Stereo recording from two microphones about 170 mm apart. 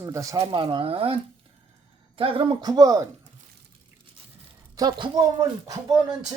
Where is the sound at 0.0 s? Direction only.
20° right (ahead or behind).